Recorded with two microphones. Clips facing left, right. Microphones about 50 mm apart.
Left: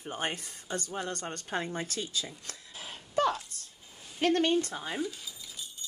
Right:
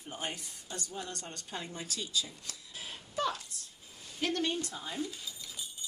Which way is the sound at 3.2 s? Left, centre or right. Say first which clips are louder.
Left 6 dB; left.